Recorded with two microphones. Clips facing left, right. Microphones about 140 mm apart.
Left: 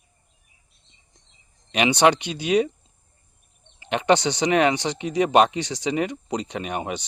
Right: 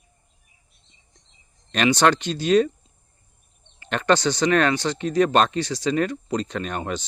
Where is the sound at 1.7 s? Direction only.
15° left (ahead or behind).